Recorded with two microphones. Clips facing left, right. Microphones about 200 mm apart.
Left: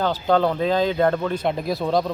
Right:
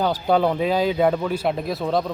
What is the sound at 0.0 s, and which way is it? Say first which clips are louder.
Speech: even; 10° right (ahead or behind).